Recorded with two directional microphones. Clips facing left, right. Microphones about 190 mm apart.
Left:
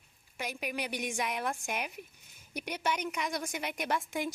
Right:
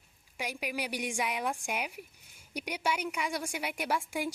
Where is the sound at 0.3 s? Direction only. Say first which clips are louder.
Right 1 dB; 10° right (ahead or behind).